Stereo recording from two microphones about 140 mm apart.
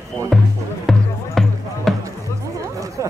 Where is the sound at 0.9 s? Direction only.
Centre (ahead or behind).